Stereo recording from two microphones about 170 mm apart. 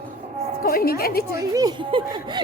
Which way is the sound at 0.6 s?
65° left (ahead or behind).